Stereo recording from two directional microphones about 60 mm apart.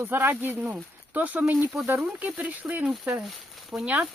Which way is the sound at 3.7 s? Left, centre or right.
Centre.